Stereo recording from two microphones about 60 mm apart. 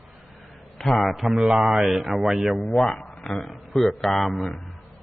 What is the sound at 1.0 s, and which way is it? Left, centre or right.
A man's voice, centre.